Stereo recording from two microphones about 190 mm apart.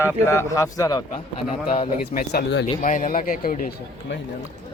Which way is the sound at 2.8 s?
45° left (ahead or behind).